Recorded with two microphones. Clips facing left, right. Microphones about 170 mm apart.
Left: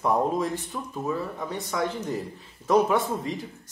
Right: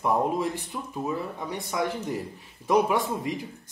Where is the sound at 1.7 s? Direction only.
15° right (ahead or behind).